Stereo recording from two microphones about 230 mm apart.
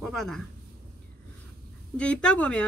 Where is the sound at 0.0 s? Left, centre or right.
Centre.